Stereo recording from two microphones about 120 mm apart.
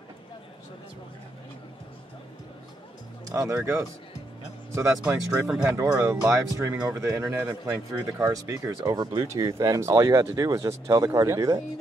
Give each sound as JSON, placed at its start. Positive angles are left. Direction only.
{"t": 3.3, "sound": "speech", "side_deg": -30}